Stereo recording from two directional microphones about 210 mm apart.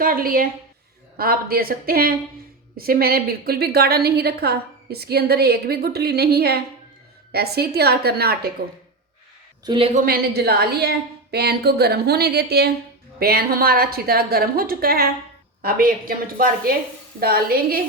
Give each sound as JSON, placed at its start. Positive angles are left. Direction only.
{"t": 0.0, "sound": "a woman's voice", "side_deg": -45}
{"t": 9.6, "sound": "speech", "side_deg": -25}
{"t": 10.0, "sound": "a woman's voice", "side_deg": -45}